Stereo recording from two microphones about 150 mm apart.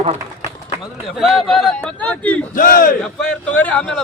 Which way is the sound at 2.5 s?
70° left (ahead or behind).